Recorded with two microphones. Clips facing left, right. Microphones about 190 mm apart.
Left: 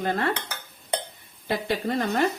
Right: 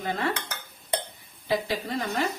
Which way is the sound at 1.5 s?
60° left (ahead or behind).